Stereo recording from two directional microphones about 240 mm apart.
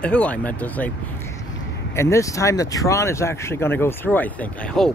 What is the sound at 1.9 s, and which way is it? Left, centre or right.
Speech, centre.